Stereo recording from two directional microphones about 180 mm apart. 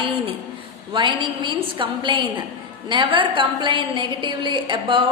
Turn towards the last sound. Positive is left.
turn(degrees=-25)  # may be behind; listen again after turning